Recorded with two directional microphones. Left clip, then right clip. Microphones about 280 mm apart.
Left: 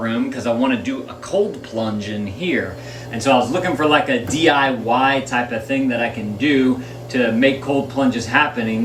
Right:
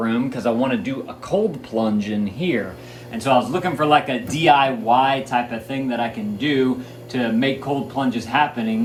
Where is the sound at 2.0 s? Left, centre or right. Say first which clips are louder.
Right 1 dB; centre.